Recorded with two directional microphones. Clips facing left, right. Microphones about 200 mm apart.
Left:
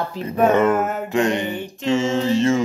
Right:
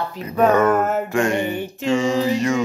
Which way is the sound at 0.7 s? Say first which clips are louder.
Right 2 dB; centre (ahead or behind).